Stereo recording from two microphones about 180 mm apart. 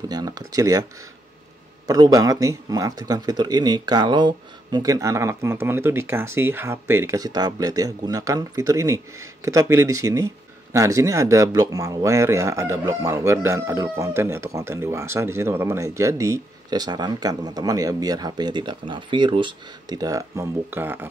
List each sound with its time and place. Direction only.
0.1 s speech: 20° right (ahead or behind)
1.9 s speech: 20° right (ahead or behind)